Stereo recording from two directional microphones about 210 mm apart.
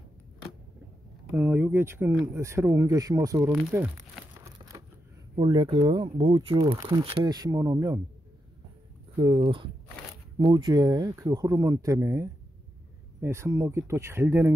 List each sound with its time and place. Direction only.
1.3 s speech: 10° right (ahead or behind)
5.3 s speech: 25° right (ahead or behind)
9.2 s speech: 25° right (ahead or behind)